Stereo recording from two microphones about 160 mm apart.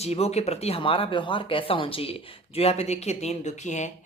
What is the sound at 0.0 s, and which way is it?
Speech, 40° left (ahead or behind).